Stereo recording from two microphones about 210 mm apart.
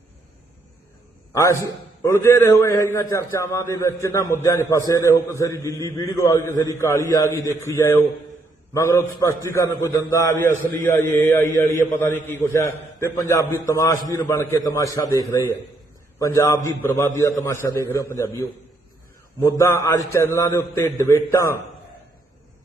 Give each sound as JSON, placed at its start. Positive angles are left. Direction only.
{"t": 1.3, "sound": "a man's voice", "side_deg": 15}